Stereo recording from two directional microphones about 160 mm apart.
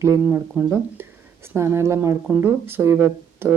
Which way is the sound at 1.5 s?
15° right (ahead or behind).